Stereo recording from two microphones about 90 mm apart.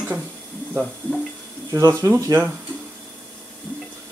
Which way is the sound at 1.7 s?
40° right (ahead or behind).